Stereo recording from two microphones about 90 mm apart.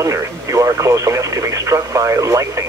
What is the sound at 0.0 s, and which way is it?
Speech, 35° right (ahead or behind).